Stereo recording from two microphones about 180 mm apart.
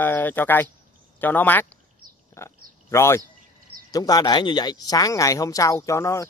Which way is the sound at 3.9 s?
20° left (ahead or behind).